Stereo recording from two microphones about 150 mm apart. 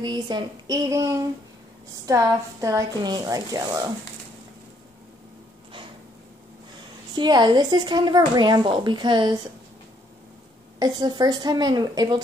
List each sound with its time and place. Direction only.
0.0 s a woman's voice: 30° right (ahead or behind)
7.2 s a woman's voice: 30° right (ahead or behind)
10.8 s a woman's voice: 30° right (ahead or behind)